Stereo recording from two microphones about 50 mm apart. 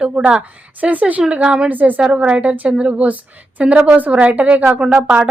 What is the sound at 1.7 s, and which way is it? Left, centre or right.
Speech, right.